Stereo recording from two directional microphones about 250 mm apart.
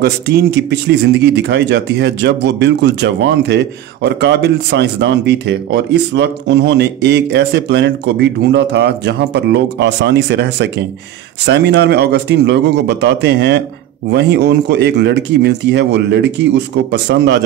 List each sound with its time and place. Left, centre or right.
0.0 s speech: right